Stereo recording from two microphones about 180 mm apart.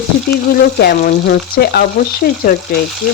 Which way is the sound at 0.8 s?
60° left (ahead or behind).